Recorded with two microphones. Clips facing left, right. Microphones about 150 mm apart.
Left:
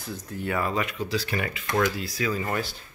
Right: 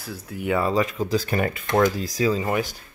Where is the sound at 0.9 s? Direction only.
45° right (ahead or behind).